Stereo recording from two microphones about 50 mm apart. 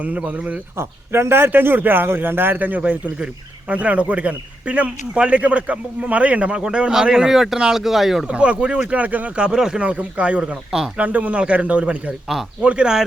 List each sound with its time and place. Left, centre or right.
0.3 s speech: right
0.8 s a man's voice: right; by 8.3 s centre
8.3 s a man's voice: right
9.4 s speech: centre
9.8 s a man's voice: right